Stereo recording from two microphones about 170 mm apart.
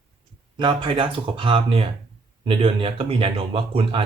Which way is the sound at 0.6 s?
30° right (ahead or behind).